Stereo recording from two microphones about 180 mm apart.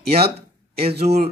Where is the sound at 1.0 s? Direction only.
35° right (ahead or behind).